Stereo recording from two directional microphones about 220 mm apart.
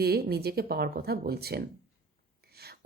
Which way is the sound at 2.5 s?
45° right (ahead or behind).